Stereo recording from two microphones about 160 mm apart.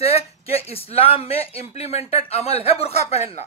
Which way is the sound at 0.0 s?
40° left (ahead or behind).